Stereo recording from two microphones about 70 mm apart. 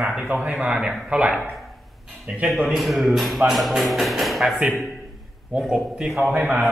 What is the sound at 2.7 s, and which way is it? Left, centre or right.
Speech, centre.